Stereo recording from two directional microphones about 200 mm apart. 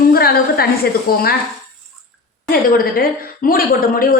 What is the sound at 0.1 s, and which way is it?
A woman's voice, 50° left (ahead or behind).